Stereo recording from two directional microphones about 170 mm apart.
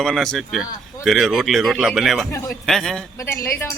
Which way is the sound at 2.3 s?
15° left (ahead or behind).